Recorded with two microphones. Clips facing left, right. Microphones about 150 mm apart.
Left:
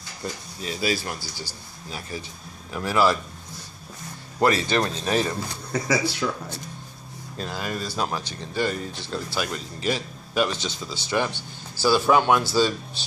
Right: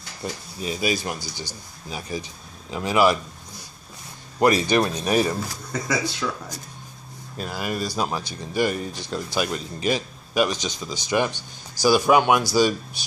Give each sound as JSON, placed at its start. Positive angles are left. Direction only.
{"t": 0.2, "sound": "speech", "side_deg": -15}
{"t": 4.4, "sound": "speech", "side_deg": -15}
{"t": 5.7, "sound": "speech", "side_deg": 10}
{"t": 7.3, "sound": "speech", "side_deg": -10}